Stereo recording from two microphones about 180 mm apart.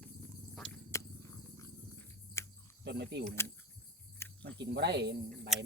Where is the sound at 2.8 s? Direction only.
70° right (ahead or behind).